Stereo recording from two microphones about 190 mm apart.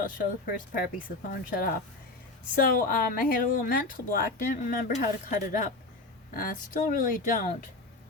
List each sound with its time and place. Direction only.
0.0 s speech: 45° left (ahead or behind)